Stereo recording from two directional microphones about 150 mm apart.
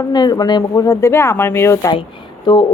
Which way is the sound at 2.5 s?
30° left (ahead or behind).